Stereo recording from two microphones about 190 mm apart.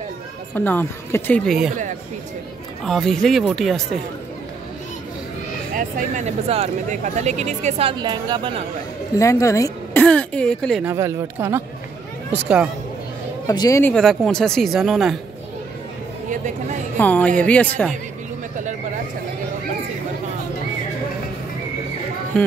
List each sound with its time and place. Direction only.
0.6 s speech: 10° left (ahead or behind)
2.8 s speech: centre (ahead or behind)
5.8 s speech: 45° right (ahead or behind); by 8.6 s 25° right (ahead or behind)
9.1 s speech: 15° left (ahead or behind)
10.8 s speech: 10° right (ahead or behind)
13.5 s speech: 20° left (ahead or behind)
13.9 s speech: 5° left (ahead or behind)
17.0 s speech: 10° left (ahead or behind)